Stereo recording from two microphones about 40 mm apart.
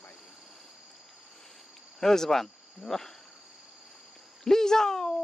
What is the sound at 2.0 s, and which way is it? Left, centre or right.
Speech, centre.